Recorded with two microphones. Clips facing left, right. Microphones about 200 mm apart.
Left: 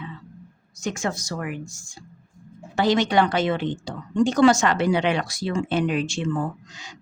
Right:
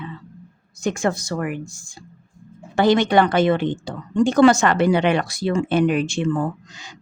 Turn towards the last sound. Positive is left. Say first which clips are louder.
# right 4 dB
turn(degrees=-55)  # may be behind; listen again after turning